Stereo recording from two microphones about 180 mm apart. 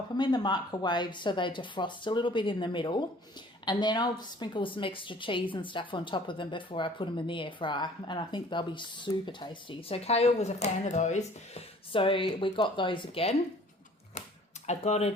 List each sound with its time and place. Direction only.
0.2 s a woman's voice: 25° left (ahead or behind)
14.7 s speech: 35° left (ahead or behind)